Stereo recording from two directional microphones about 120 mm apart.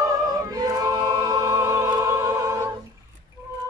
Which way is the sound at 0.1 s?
35° right (ahead or behind).